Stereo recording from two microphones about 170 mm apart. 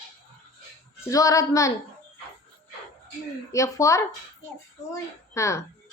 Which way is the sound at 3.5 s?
20° left (ahead or behind).